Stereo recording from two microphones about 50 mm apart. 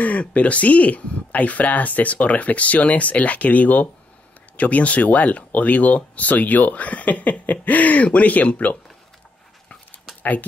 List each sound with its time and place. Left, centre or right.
0.0 s speech: left